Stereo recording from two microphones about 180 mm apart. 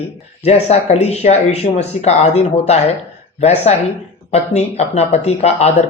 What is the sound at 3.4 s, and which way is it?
Speech, 40° left (ahead or behind).